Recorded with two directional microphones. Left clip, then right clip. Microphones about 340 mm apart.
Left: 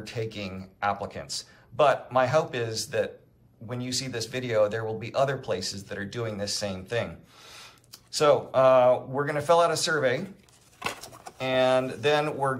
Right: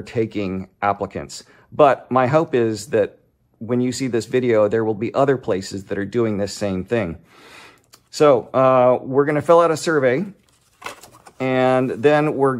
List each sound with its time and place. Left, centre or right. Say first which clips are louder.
0.0 s speech: right 11 dB; centre
10.8 s a sound: even; centre
11.3 s speech: right 6 dB; centre